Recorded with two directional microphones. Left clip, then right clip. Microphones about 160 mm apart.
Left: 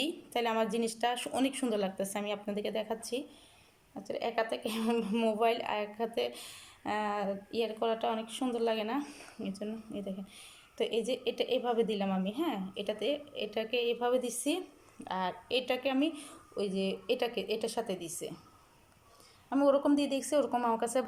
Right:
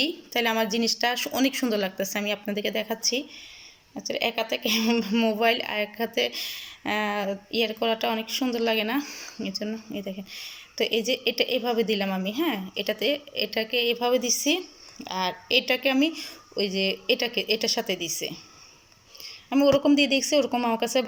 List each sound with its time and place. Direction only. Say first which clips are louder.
0.0 s a woman's voice: right 8 dB; 5° left (ahead or behind)
19.5 s a woman's voice: right 7 dB; 5° right (ahead or behind)